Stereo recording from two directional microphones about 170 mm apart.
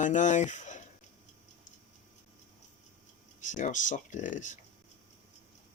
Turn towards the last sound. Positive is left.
turn(degrees=50)  # may be behind; listen again after turning